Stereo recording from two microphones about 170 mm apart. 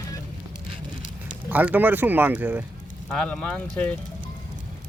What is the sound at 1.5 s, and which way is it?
Speech, 10° right (ahead or behind).